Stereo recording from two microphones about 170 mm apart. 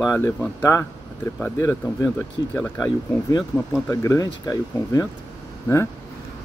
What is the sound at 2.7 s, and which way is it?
Speech, 20° left (ahead or behind).